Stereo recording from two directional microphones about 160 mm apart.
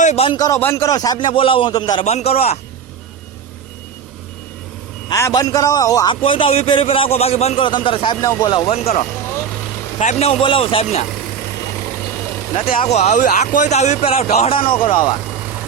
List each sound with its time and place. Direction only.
0.0 s a man's voice: 45° left (ahead or behind)
0.3 s a man's voice: 25° left (ahead or behind)
2.0 s a man's voice: 40° left (ahead or behind)
5.0 s a man's voice: 20° left (ahead or behind)
12.5 s a man's voice: 35° left (ahead or behind)